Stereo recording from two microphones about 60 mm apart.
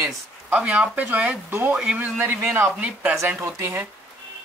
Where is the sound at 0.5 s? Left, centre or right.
Right.